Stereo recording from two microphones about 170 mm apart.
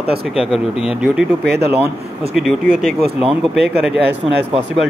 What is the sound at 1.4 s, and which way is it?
Speech, 75° right (ahead or behind).